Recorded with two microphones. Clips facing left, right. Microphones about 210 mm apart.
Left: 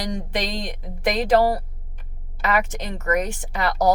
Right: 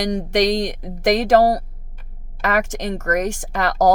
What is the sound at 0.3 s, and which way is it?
Speech, 80° right.